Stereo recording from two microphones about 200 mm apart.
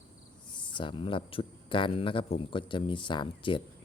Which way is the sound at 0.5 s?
25° left (ahead or behind).